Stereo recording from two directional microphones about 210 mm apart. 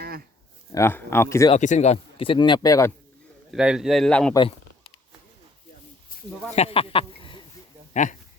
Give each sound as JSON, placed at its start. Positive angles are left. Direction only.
{"t": 0.7, "sound": "speech", "side_deg": 10}
{"t": 1.5, "sound": "speech", "side_deg": 35}
{"t": 3.5, "sound": "speech", "side_deg": -5}
{"t": 6.6, "sound": "speech", "side_deg": 25}